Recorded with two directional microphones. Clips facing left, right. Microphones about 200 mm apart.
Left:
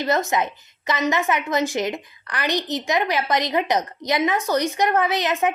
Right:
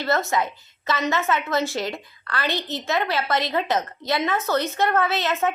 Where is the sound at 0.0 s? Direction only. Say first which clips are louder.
Left 1 dB; 15° left (ahead or behind).